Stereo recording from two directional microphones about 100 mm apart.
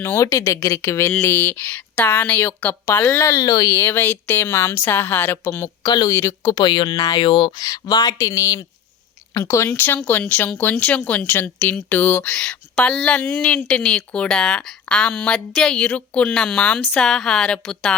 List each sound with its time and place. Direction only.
0.2 s speech: 30° left (ahead or behind)
3.0 s speech: 30° left (ahead or behind)
3.8 s speech: 20° left (ahead or behind)
5.8 s speech: 40° left (ahead or behind)
6.1 s speech: 25° left (ahead or behind)
6.6 s speech: 50° left (ahead or behind)
7.5 s speech: 40° left (ahead or behind); by 17.9 s 10° left (ahead or behind)